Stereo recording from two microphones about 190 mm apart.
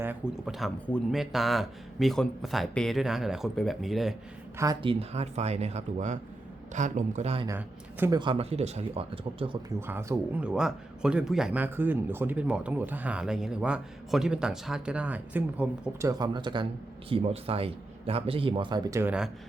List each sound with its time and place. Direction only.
0.0 s a man's voice: 5° right (ahead or behind)
4.5 s speech: 20° right (ahead or behind); by 7.4 s 35° right (ahead or behind)
7.4 s speech: 10° right (ahead or behind)
8.2 s a man's voice: 30° right (ahead or behind)
9.8 s a man's voice: 15° right (ahead or behind)
16.0 s a man's voice: 20° right (ahead or behind)